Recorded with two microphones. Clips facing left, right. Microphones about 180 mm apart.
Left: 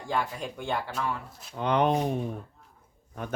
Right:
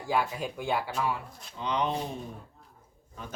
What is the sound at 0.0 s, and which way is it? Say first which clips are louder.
Speech: right 1 dB; 5° right (ahead or behind).